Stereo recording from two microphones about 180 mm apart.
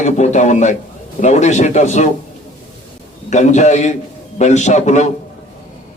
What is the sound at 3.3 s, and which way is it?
A man's voice, 40° left (ahead or behind).